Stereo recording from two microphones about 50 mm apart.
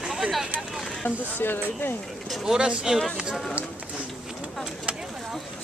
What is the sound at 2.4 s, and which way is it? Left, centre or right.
Speech, centre.